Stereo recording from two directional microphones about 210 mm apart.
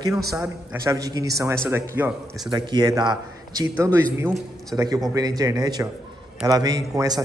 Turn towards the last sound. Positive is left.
turn(degrees=-15)  # may be behind; listen again after turning